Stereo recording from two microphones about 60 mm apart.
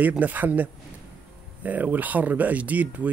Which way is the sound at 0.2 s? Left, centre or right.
Right.